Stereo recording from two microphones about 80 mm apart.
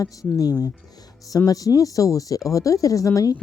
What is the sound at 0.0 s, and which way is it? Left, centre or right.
Speech, left.